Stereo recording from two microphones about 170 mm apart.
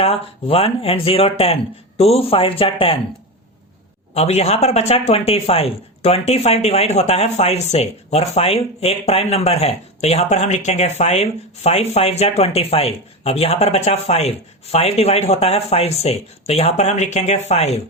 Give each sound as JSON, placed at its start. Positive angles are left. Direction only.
{"t": 0.0, "sound": "speech", "side_deg": 35}
{"t": 4.1, "sound": "speech", "side_deg": 40}